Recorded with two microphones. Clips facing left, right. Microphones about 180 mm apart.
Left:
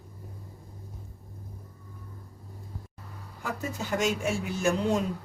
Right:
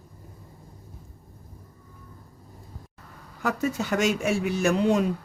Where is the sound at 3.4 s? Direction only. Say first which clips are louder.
Right 7 dB; 85° right.